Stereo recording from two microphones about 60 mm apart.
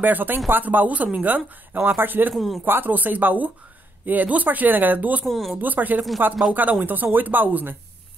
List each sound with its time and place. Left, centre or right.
0.0 s speech: right
2.3 s speech: centre
2.6 s speech: right
5.2 s speech: centre
5.6 s speech: right